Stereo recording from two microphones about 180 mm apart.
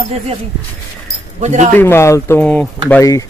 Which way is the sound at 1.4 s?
40° right (ahead or behind).